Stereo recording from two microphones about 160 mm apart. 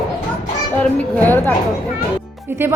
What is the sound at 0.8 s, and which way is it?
Speech, 10° left (ahead or behind).